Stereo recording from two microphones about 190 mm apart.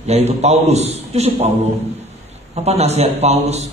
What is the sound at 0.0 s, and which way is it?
A man's voice, 35° right (ahead or behind).